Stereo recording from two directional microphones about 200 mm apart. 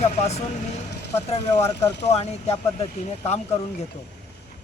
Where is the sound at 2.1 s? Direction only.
30° left (ahead or behind).